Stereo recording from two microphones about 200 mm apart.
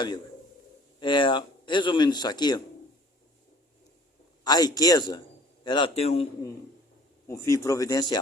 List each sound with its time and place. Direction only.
0.9 s a man's voice: 25° left (ahead or behind)
4.4 s a man's voice: 20° left (ahead or behind)
7.3 s speech: 15° left (ahead or behind)